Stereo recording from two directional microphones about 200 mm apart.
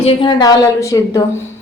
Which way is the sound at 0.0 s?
25° left (ahead or behind).